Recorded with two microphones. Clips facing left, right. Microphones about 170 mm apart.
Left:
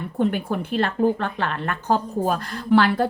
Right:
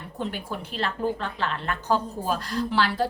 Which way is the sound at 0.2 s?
55° left (ahead or behind).